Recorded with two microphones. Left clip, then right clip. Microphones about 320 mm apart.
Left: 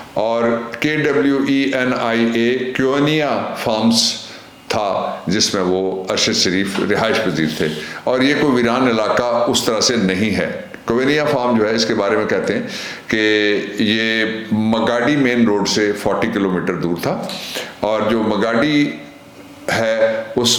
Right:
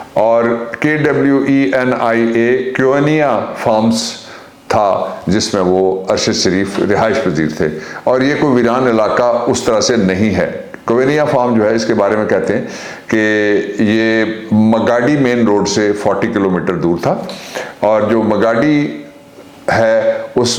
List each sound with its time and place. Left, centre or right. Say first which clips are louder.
0.2 s speech: right 6 dB; right
5.3 s a man's voice: right 4 dB; right